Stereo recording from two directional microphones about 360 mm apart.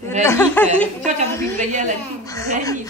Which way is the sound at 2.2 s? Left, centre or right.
Centre.